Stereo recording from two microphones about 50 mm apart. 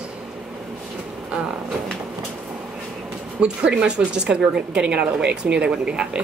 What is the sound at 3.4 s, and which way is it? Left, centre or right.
A woman's voice, right.